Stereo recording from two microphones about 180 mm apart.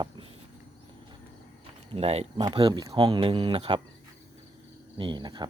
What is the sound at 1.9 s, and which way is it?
Speech, 35° right (ahead or behind).